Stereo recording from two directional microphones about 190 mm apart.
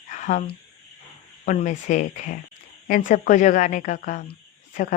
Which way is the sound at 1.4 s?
40° left (ahead or behind).